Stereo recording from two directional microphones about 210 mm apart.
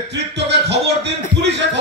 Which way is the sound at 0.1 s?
55° right (ahead or behind).